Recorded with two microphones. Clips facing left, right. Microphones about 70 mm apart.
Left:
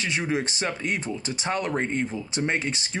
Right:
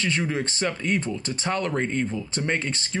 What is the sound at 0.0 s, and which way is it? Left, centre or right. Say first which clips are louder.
Speech: right 1 dB; centre.